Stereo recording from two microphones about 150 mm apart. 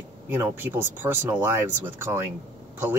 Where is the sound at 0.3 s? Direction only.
15° right (ahead or behind).